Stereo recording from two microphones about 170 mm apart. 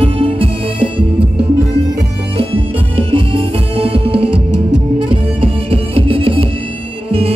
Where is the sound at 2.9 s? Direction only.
35° right (ahead or behind).